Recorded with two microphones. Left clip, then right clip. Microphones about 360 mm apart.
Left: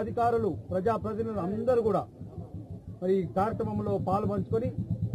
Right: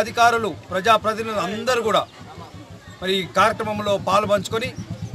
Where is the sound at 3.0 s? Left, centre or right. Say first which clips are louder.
Right 9 dB; centre.